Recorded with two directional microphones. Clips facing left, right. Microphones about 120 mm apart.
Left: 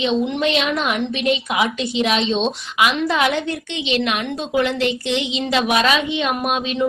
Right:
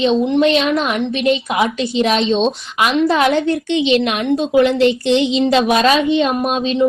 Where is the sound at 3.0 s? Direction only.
35° right (ahead or behind).